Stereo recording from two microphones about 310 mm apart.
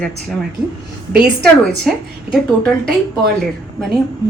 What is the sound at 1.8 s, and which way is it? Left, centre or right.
Speech, centre.